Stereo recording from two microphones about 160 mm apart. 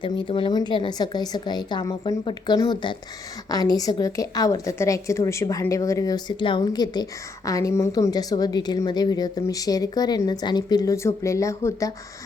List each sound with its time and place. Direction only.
0.0 s a woman's voice: 30° left (ahead or behind)